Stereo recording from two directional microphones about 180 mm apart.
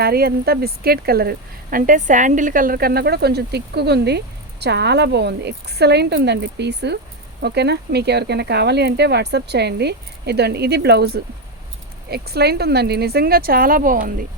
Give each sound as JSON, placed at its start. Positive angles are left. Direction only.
{"t": 0.0, "sound": "a woman's voice", "side_deg": -60}